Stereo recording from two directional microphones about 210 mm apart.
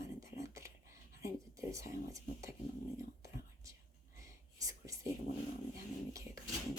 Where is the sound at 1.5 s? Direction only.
15° right (ahead or behind).